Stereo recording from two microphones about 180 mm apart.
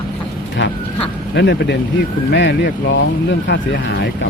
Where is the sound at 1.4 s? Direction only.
70° left (ahead or behind).